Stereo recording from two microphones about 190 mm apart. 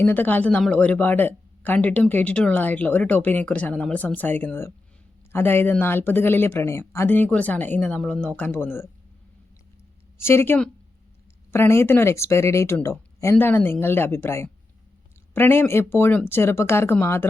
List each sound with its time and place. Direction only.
0.0 s speech: 10° left (ahead or behind)
10.2 s speech: 10° left (ahead or behind)